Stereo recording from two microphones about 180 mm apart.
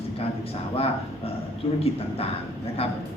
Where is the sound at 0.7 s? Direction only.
35° left (ahead or behind).